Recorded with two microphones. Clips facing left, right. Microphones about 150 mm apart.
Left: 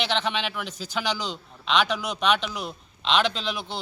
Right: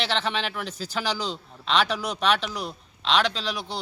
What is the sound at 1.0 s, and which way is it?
Speech, 30° right (ahead or behind).